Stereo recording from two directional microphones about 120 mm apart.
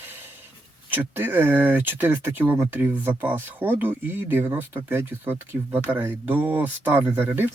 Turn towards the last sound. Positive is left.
turn(degrees=-15)  # may be behind; listen again after turning